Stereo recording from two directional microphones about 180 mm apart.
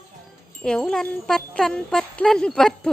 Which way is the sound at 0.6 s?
5° left (ahead or behind).